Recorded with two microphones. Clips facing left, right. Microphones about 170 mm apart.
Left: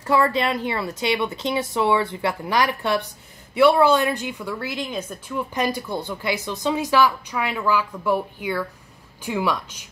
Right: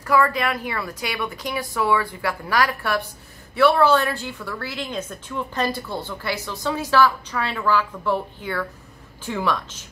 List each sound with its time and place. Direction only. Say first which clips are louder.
0.0 s a woman's voice: even; 25° left (ahead or behind)